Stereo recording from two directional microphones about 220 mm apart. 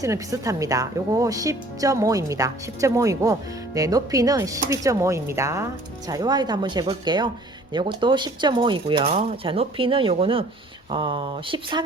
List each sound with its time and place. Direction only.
0.0 s a woman's voice: 15° right (ahead or behind)